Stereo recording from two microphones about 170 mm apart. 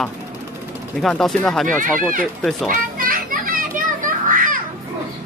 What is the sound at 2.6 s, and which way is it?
Children playing, 55° right (ahead or behind).